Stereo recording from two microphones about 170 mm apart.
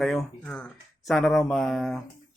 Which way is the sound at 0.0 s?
Centre (ahead or behind).